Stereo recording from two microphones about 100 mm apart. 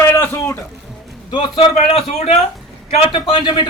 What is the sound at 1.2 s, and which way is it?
A man's voice, 55° left (ahead or behind).